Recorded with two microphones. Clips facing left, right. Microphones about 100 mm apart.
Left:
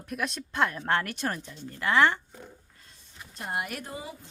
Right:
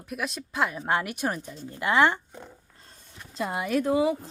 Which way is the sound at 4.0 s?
80° right.